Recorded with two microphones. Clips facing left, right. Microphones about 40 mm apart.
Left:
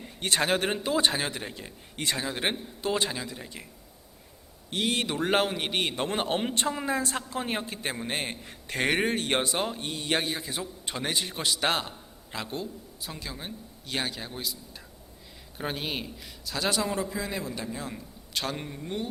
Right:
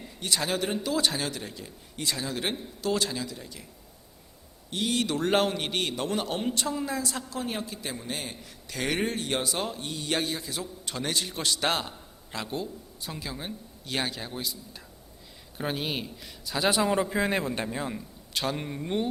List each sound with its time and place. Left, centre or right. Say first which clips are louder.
0.2 s a man's voice: left 3 dB; left
4.7 s a man's voice: even; left
5.0 s a man's voice: right 3 dB; centre; by 9.6 s left
9.6 s speech: left 2 dB; centre
9.8 s a man's voice: left 1 dB; left
10.2 s a man's voice: even; left; by 16.6 s centre
16.6 s a man's voice: right 4 dB; right
17.9 s a man's voice: right 1 dB; centre